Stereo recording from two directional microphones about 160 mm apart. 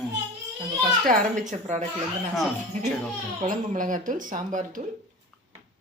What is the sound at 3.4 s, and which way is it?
Speech, 55° right (ahead or behind).